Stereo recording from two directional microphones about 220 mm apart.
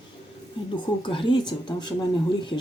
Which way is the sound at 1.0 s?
20° left (ahead or behind).